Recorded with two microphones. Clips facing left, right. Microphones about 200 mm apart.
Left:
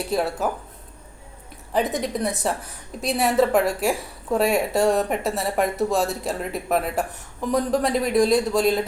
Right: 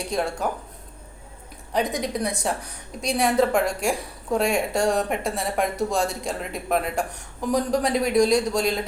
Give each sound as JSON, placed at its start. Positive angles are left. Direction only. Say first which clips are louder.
{"t": 0.0, "sound": "a woman's voice", "louder": "left 2 dB", "side_deg": 5}
{"t": 1.7, "sound": "a woman's voice", "louder": "left 1 dB", "side_deg": 0}